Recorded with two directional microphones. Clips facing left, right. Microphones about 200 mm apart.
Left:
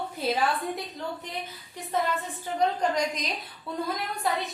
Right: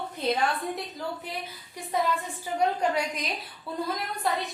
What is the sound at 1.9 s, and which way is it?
A woman's voice, 10° right (ahead or behind).